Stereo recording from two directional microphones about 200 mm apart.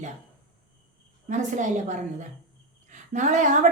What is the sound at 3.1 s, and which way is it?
Speech, 40° right (ahead or behind).